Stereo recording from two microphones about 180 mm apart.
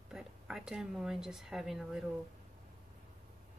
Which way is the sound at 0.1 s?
5° right (ahead or behind).